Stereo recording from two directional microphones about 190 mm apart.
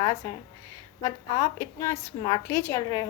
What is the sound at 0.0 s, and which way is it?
A woman's voice, 15° left (ahead or behind).